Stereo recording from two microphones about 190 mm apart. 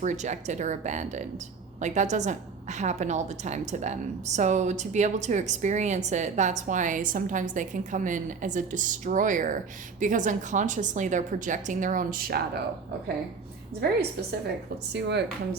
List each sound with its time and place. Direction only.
0.0 s a woman's voice: 40° right (ahead or behind)
14.2 s a woman's voice: 55° right (ahead or behind)